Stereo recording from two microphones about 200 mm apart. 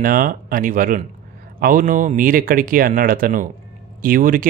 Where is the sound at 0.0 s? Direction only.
45° right (ahead or behind).